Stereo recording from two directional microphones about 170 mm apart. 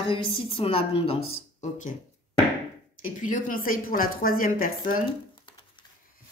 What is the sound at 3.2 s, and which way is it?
Speech, 50° left (ahead or behind).